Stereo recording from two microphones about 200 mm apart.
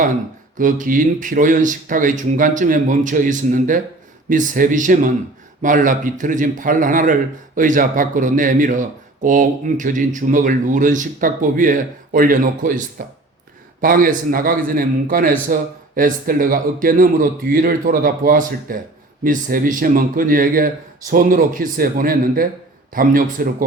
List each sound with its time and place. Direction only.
0.6 s a man's voice: 40° right (ahead or behind)